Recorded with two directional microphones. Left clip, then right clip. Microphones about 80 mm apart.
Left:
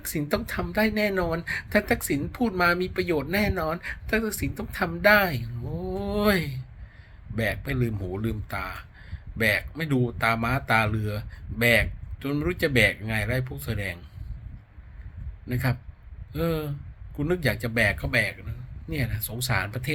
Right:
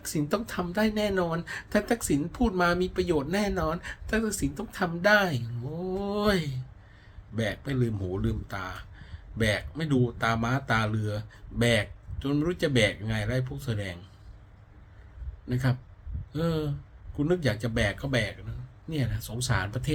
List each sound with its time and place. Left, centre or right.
0.0 s speech: right
15.4 s speech: right